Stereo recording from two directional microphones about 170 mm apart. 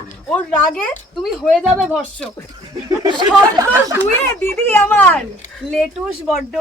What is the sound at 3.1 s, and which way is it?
Speech, 25° right (ahead or behind).